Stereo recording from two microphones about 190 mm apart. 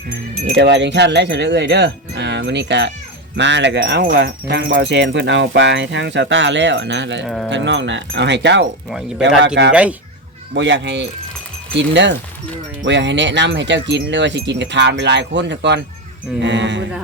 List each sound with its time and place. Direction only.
0.5 s speech: 65° right (ahead or behind)
8.9 s speech: centre (ahead or behind)
9.6 s speech: 75° right (ahead or behind)